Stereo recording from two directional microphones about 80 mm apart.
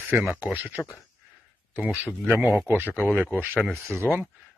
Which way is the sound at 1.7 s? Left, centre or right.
Right.